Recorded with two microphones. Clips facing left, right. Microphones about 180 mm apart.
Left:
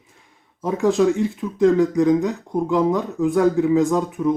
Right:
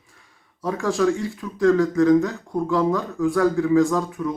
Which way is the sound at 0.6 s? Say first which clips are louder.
Left 4 dB; 20° left (ahead or behind).